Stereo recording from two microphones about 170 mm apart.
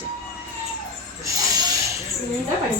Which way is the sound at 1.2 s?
20° right (ahead or behind).